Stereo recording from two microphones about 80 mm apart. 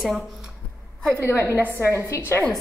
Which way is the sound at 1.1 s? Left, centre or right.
Left.